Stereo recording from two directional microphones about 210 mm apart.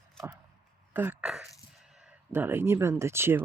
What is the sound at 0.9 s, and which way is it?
Speech, 10° right (ahead or behind).